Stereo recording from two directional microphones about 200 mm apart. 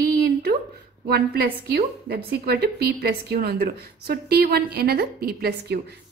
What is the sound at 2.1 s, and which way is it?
A woman's voice, 50° right (ahead or behind).